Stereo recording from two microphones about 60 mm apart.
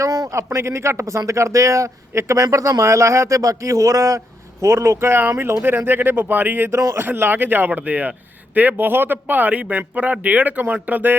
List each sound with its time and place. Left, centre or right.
0.0 s a sound: right
0.5 s speech: right
4.6 s speech: right
6.7 s speech: right
7.0 s a man's voice: right